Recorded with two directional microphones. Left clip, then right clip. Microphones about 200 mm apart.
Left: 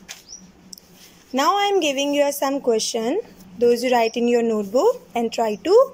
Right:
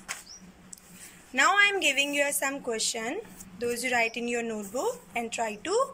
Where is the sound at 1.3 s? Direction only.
35° left (ahead or behind).